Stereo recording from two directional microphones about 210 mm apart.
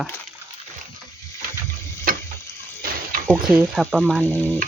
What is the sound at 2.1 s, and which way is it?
Frying, 45° right (ahead or behind).